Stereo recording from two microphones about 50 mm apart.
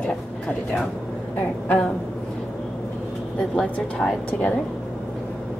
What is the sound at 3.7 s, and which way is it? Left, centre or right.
Speech, left.